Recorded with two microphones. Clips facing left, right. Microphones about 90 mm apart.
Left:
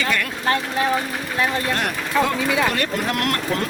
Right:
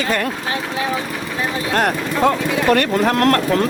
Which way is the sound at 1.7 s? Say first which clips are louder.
Right 4 dB; 45° right (ahead or behind).